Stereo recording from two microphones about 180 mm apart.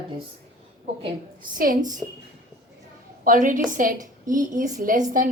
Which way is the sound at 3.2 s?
45° right (ahead or behind).